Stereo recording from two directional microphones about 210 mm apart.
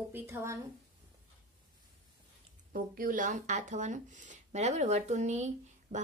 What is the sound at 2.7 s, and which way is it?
Speech, 40° right (ahead or behind).